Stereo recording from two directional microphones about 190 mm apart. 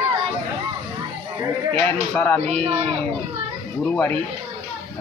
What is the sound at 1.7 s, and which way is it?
Speech, 10° left (ahead or behind).